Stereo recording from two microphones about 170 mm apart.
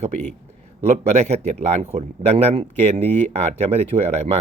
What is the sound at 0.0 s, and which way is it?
A man's voice, 40° right (ahead or behind).